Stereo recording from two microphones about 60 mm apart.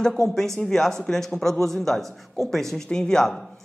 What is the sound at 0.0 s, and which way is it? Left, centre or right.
A man's voice, centre.